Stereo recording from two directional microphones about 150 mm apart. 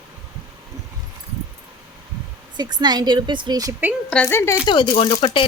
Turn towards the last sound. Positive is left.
turn(degrees=35)  # may be behind; listen again after turning